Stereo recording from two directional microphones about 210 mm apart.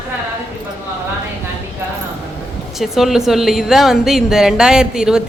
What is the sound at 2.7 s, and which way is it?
A woman's voice, centre (ahead or behind).